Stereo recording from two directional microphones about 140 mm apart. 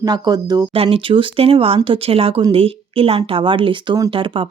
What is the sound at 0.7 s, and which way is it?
Speech, 40° right (ahead or behind).